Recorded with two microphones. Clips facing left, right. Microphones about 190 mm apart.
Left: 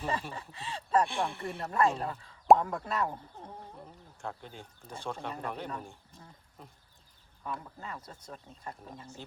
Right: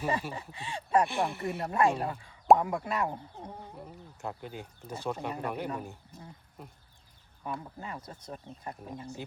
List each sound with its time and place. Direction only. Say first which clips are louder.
0.0 s speech: right 3 dB; 10° right (ahead or behind)
7.5 s speech: right 2 dB; 20° right (ahead or behind)